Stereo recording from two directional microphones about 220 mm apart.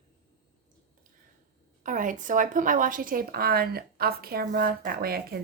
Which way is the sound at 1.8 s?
35° right (ahead or behind).